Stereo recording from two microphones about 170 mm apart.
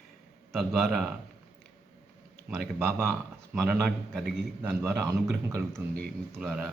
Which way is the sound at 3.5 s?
5° right (ahead or behind).